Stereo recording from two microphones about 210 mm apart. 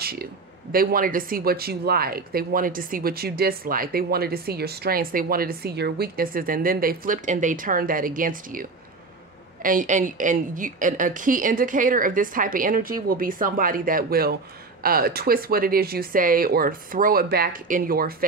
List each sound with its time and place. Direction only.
0.0 s a woman's voice: 45° right (ahead or behind)